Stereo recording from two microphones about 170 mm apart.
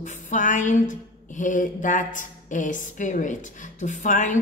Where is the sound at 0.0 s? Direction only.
50° left (ahead or behind).